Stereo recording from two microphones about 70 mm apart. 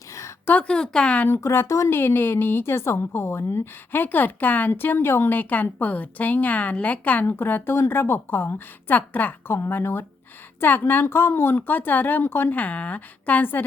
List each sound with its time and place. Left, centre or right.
0.1 s a sound: left
0.4 s a woman's voice: left
0.7 s speech: centre
1.3 s speech: left
2.0 s a woman's voice: left